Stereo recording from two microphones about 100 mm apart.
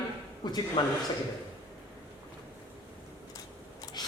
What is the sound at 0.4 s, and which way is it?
Speech, 45° left (ahead or behind).